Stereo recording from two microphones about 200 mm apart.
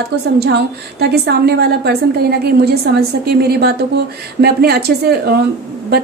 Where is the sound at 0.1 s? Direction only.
55° right (ahead or behind).